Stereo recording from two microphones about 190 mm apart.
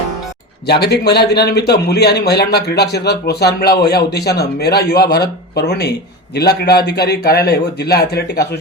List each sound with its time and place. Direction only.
0.7 s speech: 60° left (ahead or behind)